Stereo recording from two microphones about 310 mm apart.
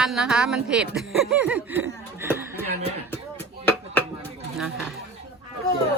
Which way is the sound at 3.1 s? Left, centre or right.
Centre.